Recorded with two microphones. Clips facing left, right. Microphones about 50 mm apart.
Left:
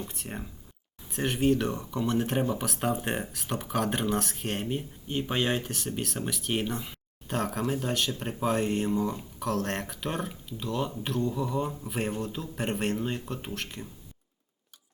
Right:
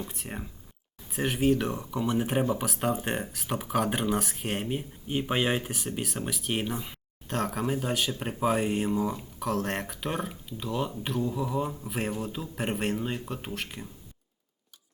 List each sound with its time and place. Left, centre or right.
0.1 s speech: centre